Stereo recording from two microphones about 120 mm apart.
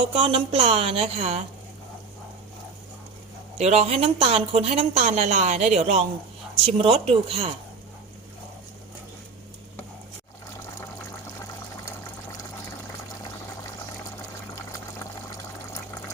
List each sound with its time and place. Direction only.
0.2 s a woman's voice: 55° right (ahead or behind)
3.6 s a woman's voice: 65° right (ahead or behind)
6.8 s speech: 50° right (ahead or behind)